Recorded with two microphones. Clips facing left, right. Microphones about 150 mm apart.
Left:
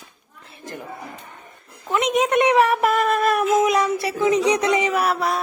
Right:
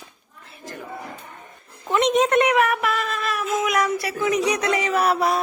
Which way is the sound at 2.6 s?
35° left (ahead or behind).